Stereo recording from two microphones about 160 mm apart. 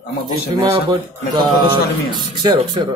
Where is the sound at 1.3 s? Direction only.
25° right (ahead or behind).